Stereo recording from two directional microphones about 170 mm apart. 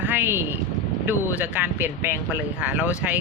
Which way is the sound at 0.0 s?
10° right (ahead or behind).